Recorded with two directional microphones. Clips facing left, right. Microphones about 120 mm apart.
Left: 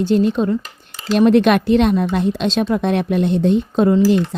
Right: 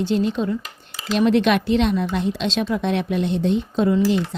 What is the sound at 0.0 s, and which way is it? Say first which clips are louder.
Speech: left 5 dB; 45° left (ahead or behind).